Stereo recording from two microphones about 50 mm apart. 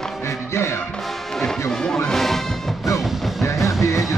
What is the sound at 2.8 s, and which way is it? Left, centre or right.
Music, left.